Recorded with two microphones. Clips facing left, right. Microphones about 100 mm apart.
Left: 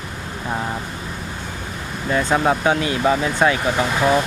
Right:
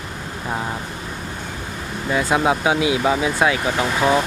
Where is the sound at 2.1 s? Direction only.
5° right (ahead or behind).